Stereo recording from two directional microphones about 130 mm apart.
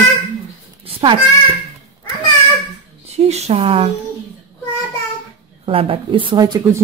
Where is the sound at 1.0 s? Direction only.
45° right (ahead or behind).